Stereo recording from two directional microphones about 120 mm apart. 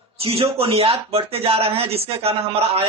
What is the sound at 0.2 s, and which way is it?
Speech, 55° right (ahead or behind).